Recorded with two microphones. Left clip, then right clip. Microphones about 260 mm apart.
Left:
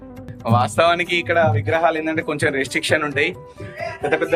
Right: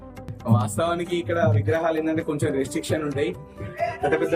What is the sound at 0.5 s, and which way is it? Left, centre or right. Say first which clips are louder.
A man's voice: left 9 dB; centre.